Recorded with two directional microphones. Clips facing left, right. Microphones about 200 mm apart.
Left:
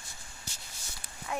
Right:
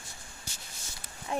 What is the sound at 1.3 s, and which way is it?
Speech, 30° right (ahead or behind).